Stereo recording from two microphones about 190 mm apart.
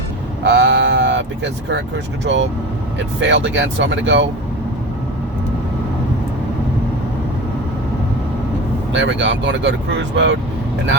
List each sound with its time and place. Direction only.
0.4 s sheep: 70° right (ahead or behind)
2.2 s speech: 75° right (ahead or behind)
8.9 s speech: 70° right (ahead or behind)